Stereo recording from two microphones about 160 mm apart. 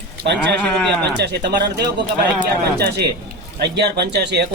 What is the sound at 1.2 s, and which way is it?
Speech, 90° right.